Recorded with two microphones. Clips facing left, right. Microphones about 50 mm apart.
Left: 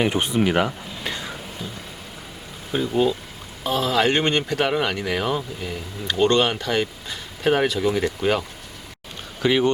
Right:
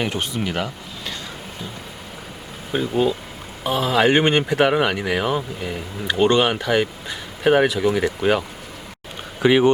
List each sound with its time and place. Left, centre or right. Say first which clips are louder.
0.0 s speech: left 4 dB; centre
2.7 s speech: right 1 dB; centre